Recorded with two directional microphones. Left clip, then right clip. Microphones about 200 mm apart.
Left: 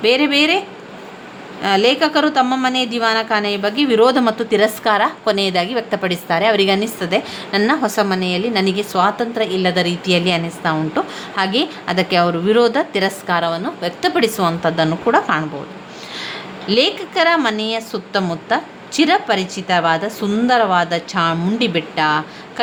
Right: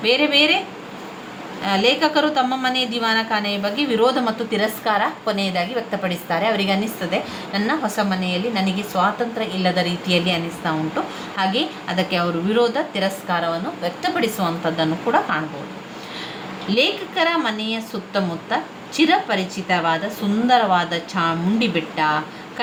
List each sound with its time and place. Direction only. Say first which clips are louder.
0.0 s a woman's voice: left 2 dB; 50° left (ahead or behind)
1.6 s a woman's voice: left 4 dB; 45° left (ahead or behind)
16.6 s a woman's voice: left 3 dB; 50° left (ahead or behind)